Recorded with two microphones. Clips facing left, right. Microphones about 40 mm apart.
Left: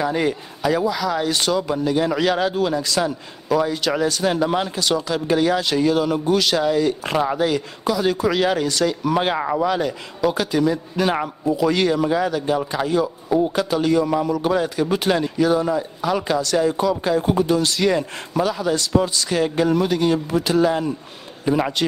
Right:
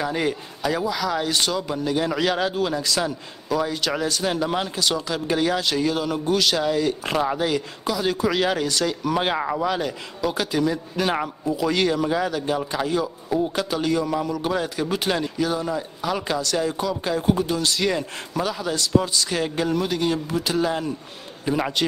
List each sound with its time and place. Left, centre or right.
0.0 s a man's voice: centre